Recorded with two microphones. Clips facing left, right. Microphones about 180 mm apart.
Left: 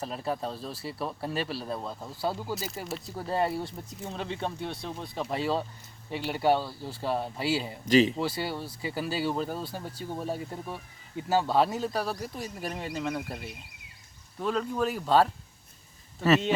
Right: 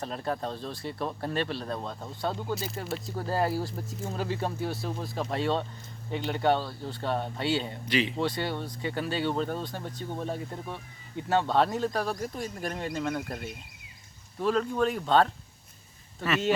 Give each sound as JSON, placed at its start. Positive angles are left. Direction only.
{"t": 0.0, "sound": "speech", "side_deg": 5}
{"t": 7.9, "sound": "speech", "side_deg": 40}
{"t": 8.1, "sound": "speech", "side_deg": 5}